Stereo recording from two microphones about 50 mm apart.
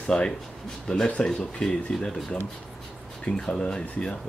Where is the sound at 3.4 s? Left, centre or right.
Centre.